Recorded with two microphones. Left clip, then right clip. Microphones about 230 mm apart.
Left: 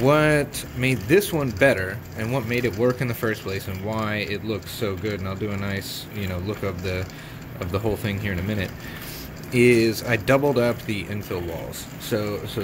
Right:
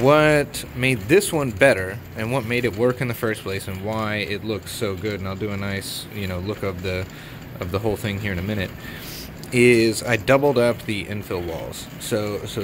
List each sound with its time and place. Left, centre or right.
0.1 s speech: right